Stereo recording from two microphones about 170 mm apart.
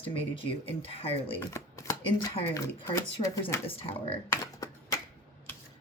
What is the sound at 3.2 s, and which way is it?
Speech, 20° left (ahead or behind).